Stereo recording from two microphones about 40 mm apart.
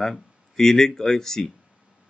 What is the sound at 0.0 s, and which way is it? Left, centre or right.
Speech, centre.